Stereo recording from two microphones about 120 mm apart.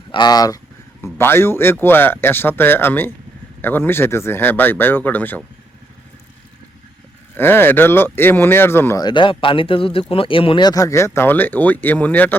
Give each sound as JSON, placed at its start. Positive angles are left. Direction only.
{"t": 0.1, "sound": "speech", "side_deg": 35}
{"t": 1.0, "sound": "speech", "side_deg": 20}
{"t": 7.3, "sound": "speech", "side_deg": 20}
{"t": 9.0, "sound": "speech", "side_deg": 40}